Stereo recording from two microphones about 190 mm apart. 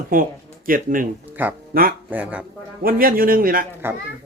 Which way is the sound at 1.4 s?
10° right (ahead or behind).